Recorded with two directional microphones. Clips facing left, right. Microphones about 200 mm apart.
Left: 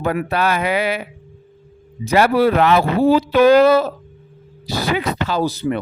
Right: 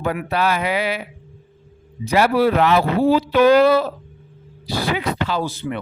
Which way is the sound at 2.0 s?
50° left (ahead or behind).